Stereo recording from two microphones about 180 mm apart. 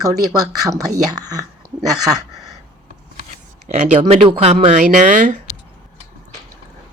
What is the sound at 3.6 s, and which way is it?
Speech, 40° right (ahead or behind).